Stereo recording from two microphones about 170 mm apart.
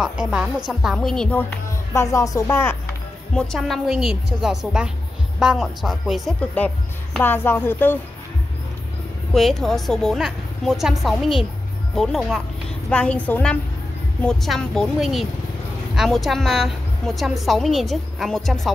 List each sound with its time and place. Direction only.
0.0 s a woman's voice: 5° right (ahead or behind)
2.0 s speech: 15° left (ahead or behind)
3.3 s a woman's voice: centre (ahead or behind)
9.3 s a woman's voice: centre (ahead or behind)